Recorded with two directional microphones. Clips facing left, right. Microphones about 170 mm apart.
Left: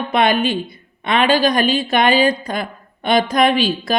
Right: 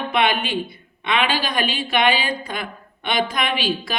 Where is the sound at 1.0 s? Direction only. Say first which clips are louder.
Left 7 dB; 45° left (ahead or behind).